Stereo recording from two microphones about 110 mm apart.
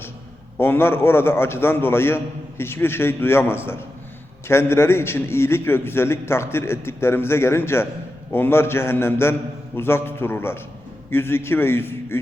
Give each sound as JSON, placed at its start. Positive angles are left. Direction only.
{"t": 0.5, "sound": "a man's voice", "side_deg": 20}